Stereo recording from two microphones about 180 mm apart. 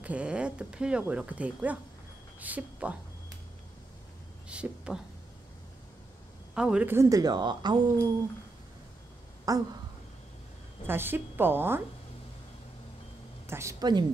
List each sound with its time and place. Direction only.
0.0 s speech: 5° right (ahead or behind)
4.5 s speech: 5° right (ahead or behind)
6.5 s speech: 5° right (ahead or behind); by 8.1 s 25° right (ahead or behind)
9.5 s a woman's voice: 20° right (ahead or behind)
10.9 s speech: 10° right (ahead or behind)
13.5 s a woman's voice: 15° right (ahead or behind)